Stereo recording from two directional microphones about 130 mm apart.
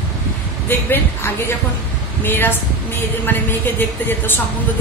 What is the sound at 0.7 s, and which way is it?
A woman's voice, 15° left (ahead or behind).